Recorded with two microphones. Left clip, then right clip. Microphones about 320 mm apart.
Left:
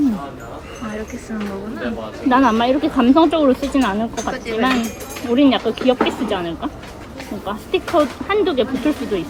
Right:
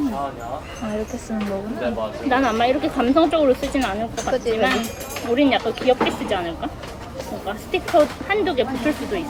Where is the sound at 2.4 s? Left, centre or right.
Centre.